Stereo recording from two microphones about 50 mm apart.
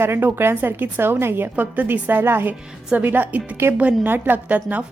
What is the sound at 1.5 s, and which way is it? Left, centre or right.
Speech, right.